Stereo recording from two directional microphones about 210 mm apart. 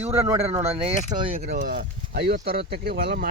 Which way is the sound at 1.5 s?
45° right (ahead or behind).